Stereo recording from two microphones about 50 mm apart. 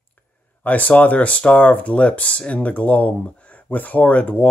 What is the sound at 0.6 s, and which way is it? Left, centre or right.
Speech, left.